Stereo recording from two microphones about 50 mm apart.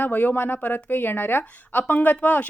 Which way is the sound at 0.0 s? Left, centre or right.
Left.